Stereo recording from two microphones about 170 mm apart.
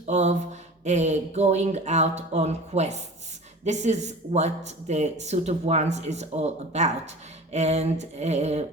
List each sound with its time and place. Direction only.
0.0 s speech: 40° right (ahead or behind)